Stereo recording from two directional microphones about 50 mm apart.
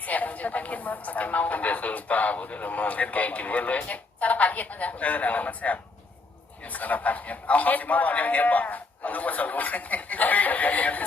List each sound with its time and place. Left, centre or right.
0.0 s speech: left